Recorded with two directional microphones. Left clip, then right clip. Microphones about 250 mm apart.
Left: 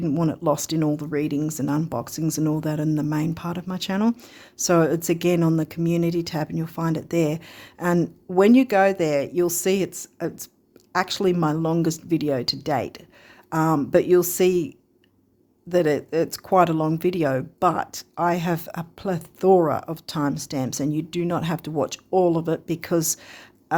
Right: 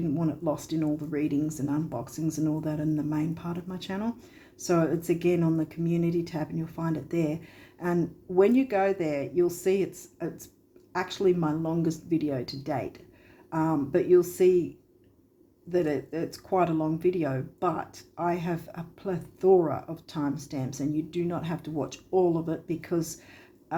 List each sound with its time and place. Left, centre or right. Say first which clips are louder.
0.0 s speech: left 6 dB; left
15.7 s speech: left 7 dB; left